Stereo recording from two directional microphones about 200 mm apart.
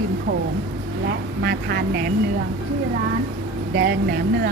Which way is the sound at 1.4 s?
55° right (ahead or behind).